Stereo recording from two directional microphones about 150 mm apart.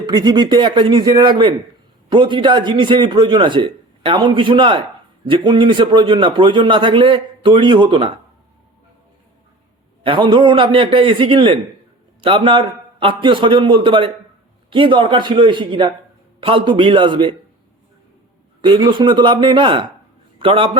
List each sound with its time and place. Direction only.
0.0 s a man's voice: 25° right (ahead or behind)
10.0 s a man's voice: 35° right (ahead or behind)
18.6 s a man's voice: 30° right (ahead or behind)